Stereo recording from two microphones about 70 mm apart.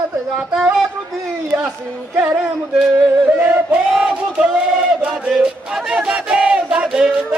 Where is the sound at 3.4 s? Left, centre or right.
Right.